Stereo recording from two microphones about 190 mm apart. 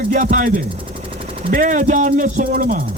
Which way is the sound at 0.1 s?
40° right (ahead or behind).